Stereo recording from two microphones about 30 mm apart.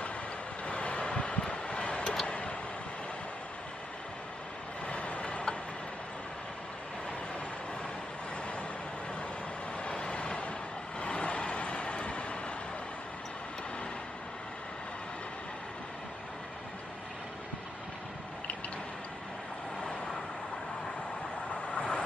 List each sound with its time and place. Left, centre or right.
0.7 s vehicle: left
4.8 s vehicle: left
9.8 s vehicle: left
21.6 s vehicle: left